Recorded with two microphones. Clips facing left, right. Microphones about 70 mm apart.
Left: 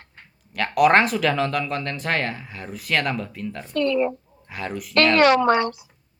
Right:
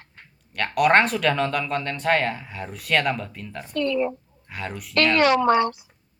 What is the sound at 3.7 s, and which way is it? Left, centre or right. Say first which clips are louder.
Speech: left 2 dB; left.